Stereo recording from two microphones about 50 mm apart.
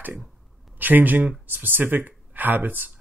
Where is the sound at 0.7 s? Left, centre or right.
Right.